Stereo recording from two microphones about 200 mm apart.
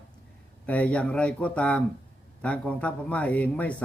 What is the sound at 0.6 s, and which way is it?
Speech, 5° left (ahead or behind).